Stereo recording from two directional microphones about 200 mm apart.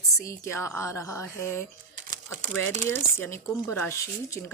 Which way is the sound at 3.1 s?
10° left (ahead or behind).